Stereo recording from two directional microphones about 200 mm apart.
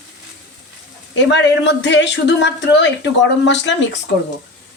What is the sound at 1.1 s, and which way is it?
Speech, 60° left (ahead or behind).